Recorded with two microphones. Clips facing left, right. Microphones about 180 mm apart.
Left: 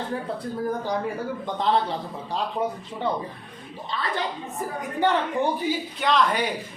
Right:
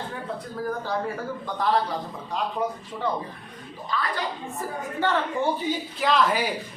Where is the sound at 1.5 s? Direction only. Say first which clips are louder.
Even; 25° left (ahead or behind).